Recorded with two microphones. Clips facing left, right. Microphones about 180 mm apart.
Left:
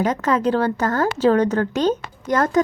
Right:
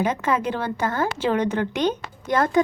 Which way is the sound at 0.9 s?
40° left (ahead or behind).